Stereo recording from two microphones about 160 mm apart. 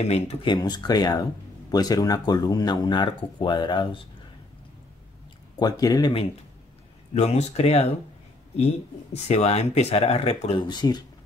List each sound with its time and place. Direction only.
0.0 s speech: 45° left (ahead or behind)
0.5 s speech: 25° left (ahead or behind)
5.6 s speech: 25° left (ahead or behind)
7.2 s speech: 40° left (ahead or behind)
9.1 s speech: 45° left (ahead or behind)
10.6 s speech: 25° left (ahead or behind)